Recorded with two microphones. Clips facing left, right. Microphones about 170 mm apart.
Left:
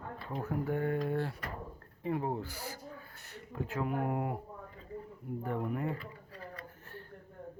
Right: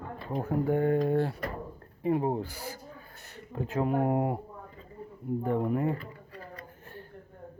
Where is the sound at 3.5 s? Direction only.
20° right (ahead or behind).